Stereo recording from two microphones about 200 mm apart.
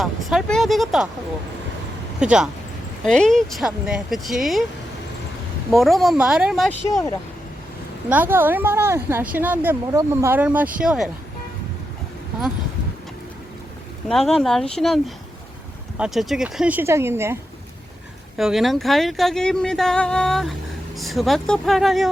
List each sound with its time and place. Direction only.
0.0 s speech: centre (ahead or behind)
2.1 s speech: 5° right (ahead or behind)
5.7 s speech: centre (ahead or behind)
6.8 s speech: 15° left (ahead or behind)
8.1 s speech: 10° right (ahead or behind)
14.1 s speech: centre (ahead or behind)
18.3 s speech: centre (ahead or behind)